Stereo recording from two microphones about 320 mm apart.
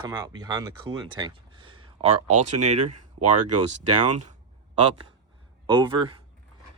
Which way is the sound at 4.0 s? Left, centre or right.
Right.